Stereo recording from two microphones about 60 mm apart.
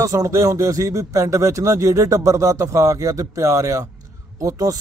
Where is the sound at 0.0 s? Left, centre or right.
Right.